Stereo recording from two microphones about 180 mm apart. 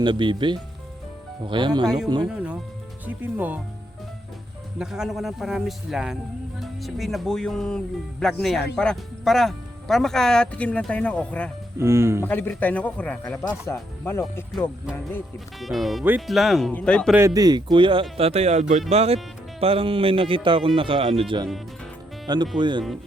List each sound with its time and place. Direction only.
0.0 s speech: 25° right (ahead or behind)
2.2 s speech: 5° right (ahead or behind)
4.8 s speech: centre (ahead or behind)
11.8 s speech: 15° right (ahead or behind)
12.2 s speech: 10° left (ahead or behind)
15.6 s speech: centre (ahead or behind)
17.2 s speech: 20° right (ahead or behind)
22.5 s speech: 25° right (ahead or behind)